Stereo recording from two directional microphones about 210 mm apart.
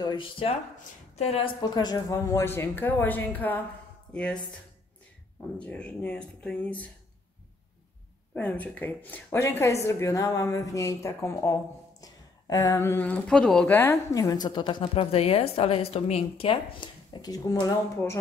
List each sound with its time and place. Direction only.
0.0 s speech: 25° left (ahead or behind); by 4.4 s 5° left (ahead or behind)
5.6 s speech: 5° left (ahead or behind)
8.4 s speech: 5° left (ahead or behind)